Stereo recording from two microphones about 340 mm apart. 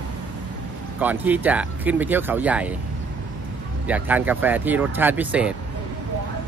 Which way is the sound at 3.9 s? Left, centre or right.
Centre.